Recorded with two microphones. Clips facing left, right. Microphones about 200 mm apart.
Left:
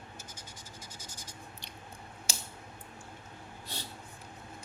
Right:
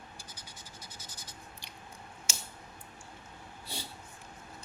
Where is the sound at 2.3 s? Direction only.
35° left (ahead or behind).